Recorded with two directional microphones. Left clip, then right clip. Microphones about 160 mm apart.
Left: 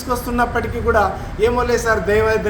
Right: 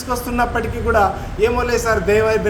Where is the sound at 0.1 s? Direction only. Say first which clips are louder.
Left 1 dB; 10° right (ahead or behind).